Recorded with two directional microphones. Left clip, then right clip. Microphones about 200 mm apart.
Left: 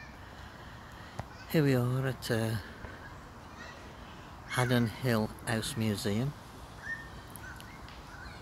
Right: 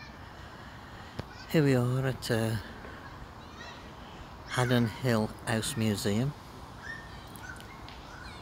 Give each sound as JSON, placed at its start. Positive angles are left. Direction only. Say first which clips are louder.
{"t": 1.5, "sound": "speech", "louder": "right 2 dB", "side_deg": 0}
{"t": 4.5, "sound": "speech", "louder": "right 2 dB", "side_deg": 0}